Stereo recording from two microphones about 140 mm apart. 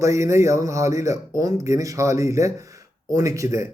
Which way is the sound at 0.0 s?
20° right (ahead or behind).